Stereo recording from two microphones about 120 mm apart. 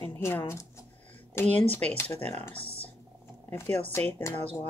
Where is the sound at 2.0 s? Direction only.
25° left (ahead or behind).